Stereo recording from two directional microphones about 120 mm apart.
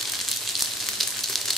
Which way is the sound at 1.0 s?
Centre (ahead or behind).